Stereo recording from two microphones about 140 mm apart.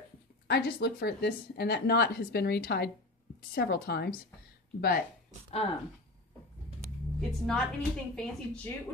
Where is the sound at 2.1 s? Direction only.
90° left.